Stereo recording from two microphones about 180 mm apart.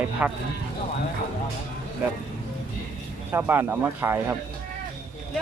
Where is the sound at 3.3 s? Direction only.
10° right (ahead or behind).